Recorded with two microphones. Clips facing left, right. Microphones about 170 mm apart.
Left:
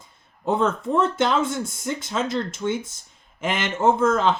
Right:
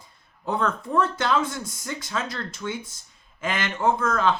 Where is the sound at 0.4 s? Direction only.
25° left (ahead or behind).